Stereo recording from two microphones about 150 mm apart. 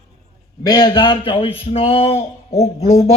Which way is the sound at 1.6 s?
40° left (ahead or behind).